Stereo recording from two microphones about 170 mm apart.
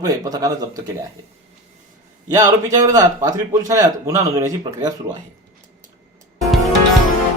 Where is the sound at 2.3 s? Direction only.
20° right (ahead or behind).